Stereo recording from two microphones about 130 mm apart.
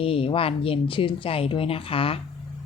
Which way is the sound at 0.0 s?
45° left (ahead or behind).